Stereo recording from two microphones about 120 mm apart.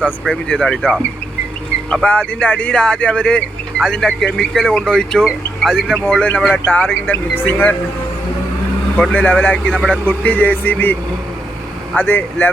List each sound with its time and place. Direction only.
0.0 s speech: 10° left (ahead or behind)
9.0 s speech: 10° left (ahead or behind)
11.9 s speech: 15° left (ahead or behind)